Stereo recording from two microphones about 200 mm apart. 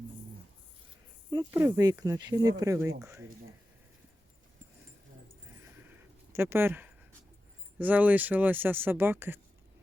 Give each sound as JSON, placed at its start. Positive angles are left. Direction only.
{"t": 1.5, "sound": "speech", "side_deg": -10}
{"t": 6.3, "sound": "speech", "side_deg": -10}